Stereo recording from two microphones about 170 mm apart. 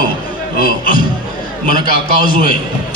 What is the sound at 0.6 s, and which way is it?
A man's voice, 55° left (ahead or behind).